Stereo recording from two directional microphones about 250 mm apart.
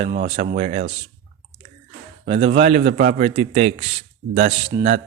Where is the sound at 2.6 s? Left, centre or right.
Right.